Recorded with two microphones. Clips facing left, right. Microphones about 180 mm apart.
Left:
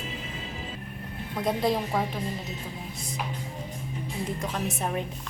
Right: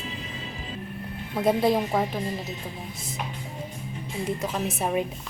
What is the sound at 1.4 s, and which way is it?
Speech, 5° right (ahead or behind).